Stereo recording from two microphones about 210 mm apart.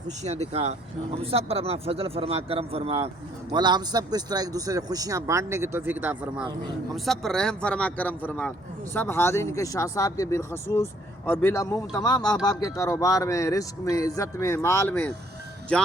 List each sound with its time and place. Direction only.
0.3 s a man's voice: 30° right (ahead or behind); by 15.1 s 5° left (ahead or behind)